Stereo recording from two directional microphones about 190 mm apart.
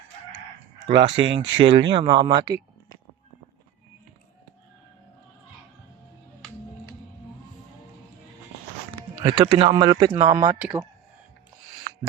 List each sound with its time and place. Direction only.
0.9 s speech: 25° right (ahead or behind)
9.6 s speech: 25° right (ahead or behind)